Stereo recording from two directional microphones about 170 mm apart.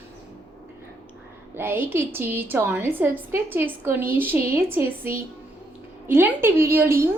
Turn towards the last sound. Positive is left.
turn(degrees=-15)  # may be behind; listen again after turning